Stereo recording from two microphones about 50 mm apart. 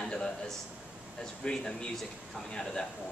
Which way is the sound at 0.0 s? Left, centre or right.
Centre.